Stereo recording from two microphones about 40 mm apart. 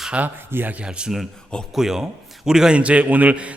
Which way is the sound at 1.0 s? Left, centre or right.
Right.